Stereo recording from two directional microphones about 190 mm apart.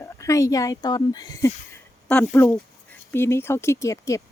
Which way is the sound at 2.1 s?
10° left (ahead or behind).